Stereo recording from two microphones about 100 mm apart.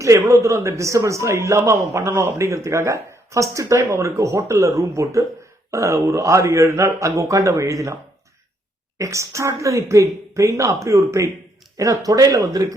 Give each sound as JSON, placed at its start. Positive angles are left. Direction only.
{"t": 0.0, "sound": "a man's voice", "side_deg": -30}
{"t": 9.0, "sound": "a man's voice", "side_deg": -30}